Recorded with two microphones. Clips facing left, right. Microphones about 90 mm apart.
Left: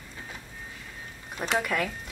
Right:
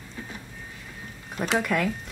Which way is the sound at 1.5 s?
Centre (ahead or behind).